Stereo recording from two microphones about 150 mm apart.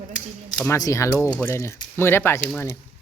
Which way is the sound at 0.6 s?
20° left (ahead or behind).